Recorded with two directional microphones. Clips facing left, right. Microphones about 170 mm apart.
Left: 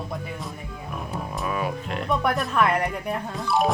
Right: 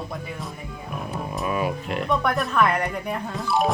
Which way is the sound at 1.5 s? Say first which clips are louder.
Right 3 dB; 10° right (ahead or behind).